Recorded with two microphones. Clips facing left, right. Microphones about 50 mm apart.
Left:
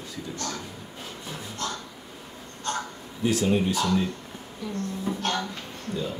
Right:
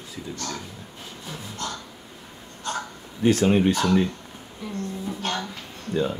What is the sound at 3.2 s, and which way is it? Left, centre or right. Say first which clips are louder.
Speech: right 5 dB; right.